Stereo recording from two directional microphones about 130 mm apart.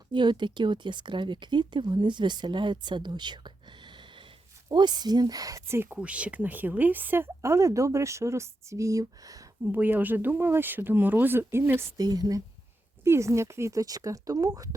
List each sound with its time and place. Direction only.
0.1 s speech: 35° right (ahead or behind)
9.7 s speech: 15° right (ahead or behind)
11.9 s speech: 30° right (ahead or behind)